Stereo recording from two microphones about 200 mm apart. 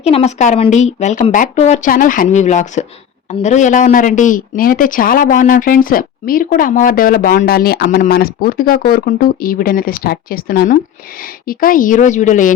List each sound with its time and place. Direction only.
0.0 s speech: 30° left (ahead or behind)